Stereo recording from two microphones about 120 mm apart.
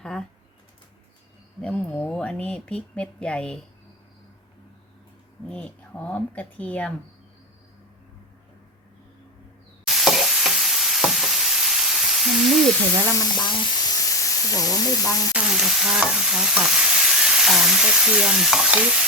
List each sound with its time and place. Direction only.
0.0 s a sound: 5° left (ahead or behind)
1.6 s speech: 10° left (ahead or behind)
5.5 s speech: 10° left (ahead or behind)
9.8 s stir: centre (ahead or behind)
13.1 s speech: 35° left (ahead or behind)
15.4 s stir: 5° right (ahead or behind)